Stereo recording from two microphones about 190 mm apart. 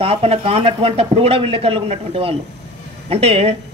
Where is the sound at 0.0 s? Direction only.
30° right (ahead or behind).